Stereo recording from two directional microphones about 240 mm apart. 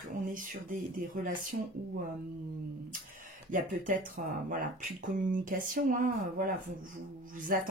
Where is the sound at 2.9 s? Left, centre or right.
Right.